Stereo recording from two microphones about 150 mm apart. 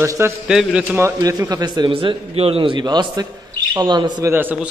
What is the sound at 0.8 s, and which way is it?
A man's voice, 15° right (ahead or behind).